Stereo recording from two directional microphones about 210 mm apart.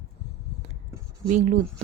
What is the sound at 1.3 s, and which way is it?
Speech, 35° right (ahead or behind).